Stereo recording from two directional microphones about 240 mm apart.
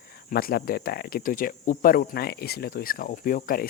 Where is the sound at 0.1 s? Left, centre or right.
Left.